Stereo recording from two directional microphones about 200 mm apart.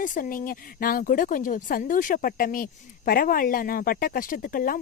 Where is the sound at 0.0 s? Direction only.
40° left (ahead or behind).